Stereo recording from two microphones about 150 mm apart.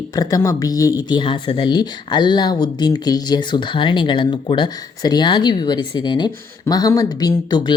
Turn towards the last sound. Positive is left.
turn(degrees=25)  # may be behind; listen again after turning